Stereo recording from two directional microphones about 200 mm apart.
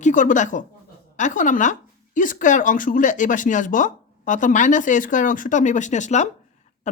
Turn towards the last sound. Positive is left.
turn(degrees=35)  # may be behind; listen again after turning